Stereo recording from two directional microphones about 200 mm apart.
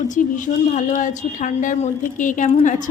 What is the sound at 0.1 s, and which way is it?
A woman's voice, 40° left (ahead or behind).